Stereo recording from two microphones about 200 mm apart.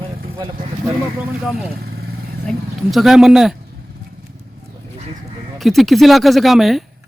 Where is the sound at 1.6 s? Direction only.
50° right (ahead or behind).